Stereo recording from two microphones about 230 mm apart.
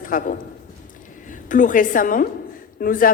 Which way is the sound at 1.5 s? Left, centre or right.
Left.